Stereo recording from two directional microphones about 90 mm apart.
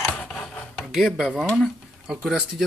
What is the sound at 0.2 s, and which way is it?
Rub, 10° left (ahead or behind).